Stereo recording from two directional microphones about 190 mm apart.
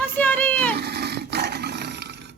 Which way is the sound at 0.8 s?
60° right (ahead or behind).